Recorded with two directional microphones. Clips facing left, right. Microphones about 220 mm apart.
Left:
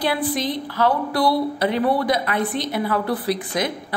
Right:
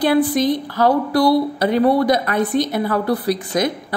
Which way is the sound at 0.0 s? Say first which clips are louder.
Right 7 dB; 45° right (ahead or behind).